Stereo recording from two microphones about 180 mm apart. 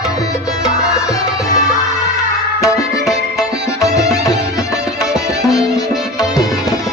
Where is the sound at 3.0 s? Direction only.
Centre (ahead or behind).